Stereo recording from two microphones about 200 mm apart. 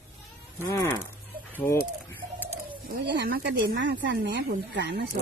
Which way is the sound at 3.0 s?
60° right (ahead or behind).